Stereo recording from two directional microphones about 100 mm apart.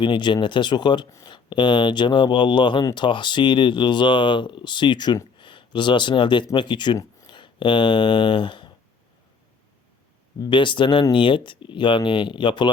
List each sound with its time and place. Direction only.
0.0 s speech: 50° left (ahead or behind)
10.4 s speech: 55° left (ahead or behind)